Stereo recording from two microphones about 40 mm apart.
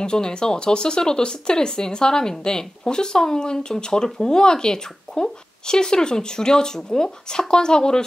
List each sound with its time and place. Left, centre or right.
0.0 s speech: left